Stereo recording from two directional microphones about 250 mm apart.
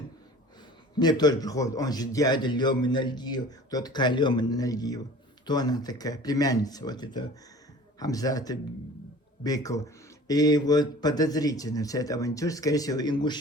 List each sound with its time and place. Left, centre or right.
0.9 s a man's voice: centre